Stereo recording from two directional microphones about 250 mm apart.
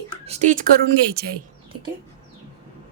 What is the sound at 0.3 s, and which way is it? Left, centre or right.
Speech, right.